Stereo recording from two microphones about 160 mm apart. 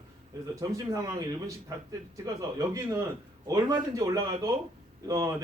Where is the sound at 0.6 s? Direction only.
20° right (ahead or behind).